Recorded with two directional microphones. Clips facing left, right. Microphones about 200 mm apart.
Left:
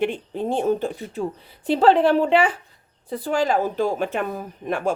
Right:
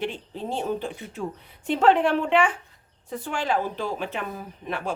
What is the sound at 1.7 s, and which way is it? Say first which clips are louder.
Speech: left 4 dB; 35° left (ahead or behind).